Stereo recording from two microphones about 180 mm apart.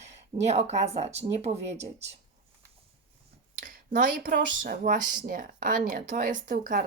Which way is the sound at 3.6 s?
50° right (ahead or behind).